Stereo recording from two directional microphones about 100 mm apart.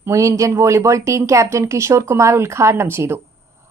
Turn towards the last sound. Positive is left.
turn(degrees=-25)  # may be behind; listen again after turning